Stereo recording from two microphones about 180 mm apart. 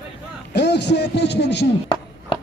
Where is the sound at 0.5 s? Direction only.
65° left (ahead or behind).